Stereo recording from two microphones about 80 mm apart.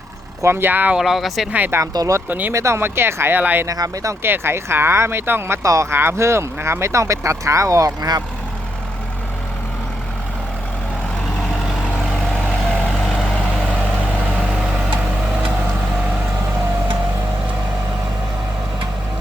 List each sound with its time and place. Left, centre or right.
0.4 s speech: right
0.9 s speech: centre
1.5 s speech: right
1.9 s speech: right
2.5 s speech: right
3.7 s speech: right
4.2 s speech: right
5.6 s speech: right
12.6 s vehicle: centre